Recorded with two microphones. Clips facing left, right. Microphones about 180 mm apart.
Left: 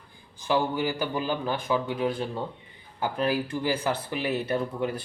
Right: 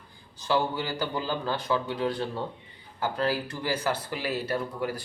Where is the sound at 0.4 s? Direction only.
15° left (ahead or behind).